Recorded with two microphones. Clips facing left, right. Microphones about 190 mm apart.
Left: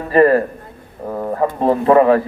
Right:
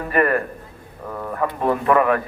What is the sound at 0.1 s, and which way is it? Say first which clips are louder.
Speech: left 8 dB; 30° left (ahead or behind).